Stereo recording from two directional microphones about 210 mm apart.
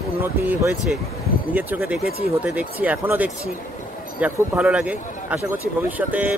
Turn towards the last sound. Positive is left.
turn(degrees=-5)  # may be behind; listen again after turning